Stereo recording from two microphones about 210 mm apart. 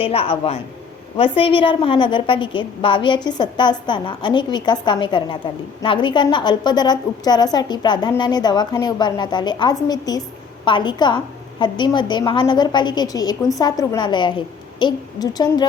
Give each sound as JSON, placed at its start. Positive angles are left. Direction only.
{"t": 0.0, "sound": "a woman's voice", "side_deg": 25}